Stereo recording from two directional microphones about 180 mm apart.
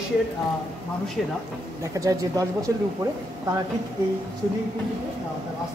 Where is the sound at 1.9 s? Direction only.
20° right (ahead or behind).